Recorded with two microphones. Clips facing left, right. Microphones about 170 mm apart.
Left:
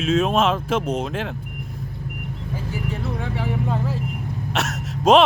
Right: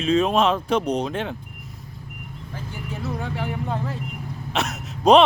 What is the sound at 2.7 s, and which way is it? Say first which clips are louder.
Speech: left 1 dB; centre (ahead or behind).